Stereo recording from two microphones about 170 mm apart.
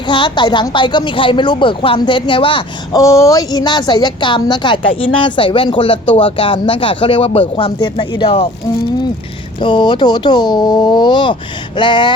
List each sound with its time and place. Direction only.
0.1 s a woman's voice: 25° left (ahead or behind)
9.6 s a woman's voice: 30° left (ahead or behind)